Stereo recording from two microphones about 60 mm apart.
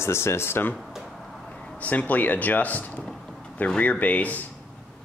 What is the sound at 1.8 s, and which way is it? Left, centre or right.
Speech, left.